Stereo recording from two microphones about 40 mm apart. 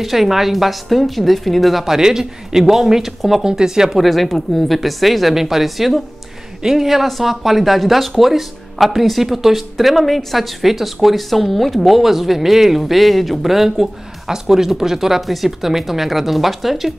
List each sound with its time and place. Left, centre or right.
0.0 s speech: centre
2.0 s a man's voice: centre
4.0 s speech: centre